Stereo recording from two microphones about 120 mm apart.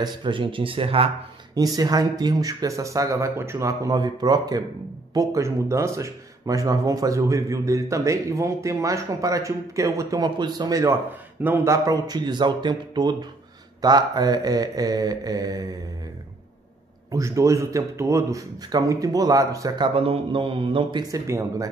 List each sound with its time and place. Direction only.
0.0 s a man's voice: 45° right (ahead or behind)
1.5 s speech: 30° right (ahead or behind)
17.1 s speech: 25° right (ahead or behind)
19.8 s a man's voice: 50° right (ahead or behind)
21.1 s speech: 25° right (ahead or behind)